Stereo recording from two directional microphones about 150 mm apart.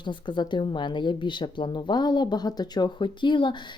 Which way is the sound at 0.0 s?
30° left (ahead or behind).